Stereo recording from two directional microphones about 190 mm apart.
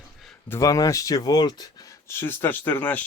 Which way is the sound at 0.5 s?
20° left (ahead or behind).